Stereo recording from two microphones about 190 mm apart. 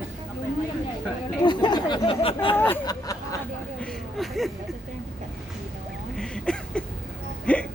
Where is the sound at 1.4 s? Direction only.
25° left (ahead or behind).